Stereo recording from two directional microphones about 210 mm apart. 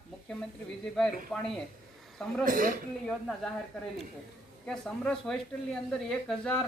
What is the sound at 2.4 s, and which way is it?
Speech, 40° right (ahead or behind).